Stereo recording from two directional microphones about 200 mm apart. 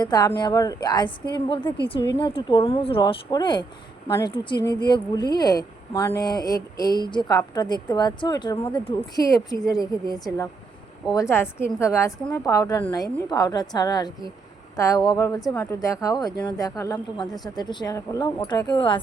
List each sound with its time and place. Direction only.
0.0 s speech: 20° left (ahead or behind)